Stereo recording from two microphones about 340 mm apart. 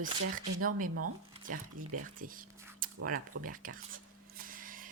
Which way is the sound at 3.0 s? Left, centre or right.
Right.